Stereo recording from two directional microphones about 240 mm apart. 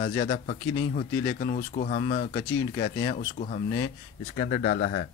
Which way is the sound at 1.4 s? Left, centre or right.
Left.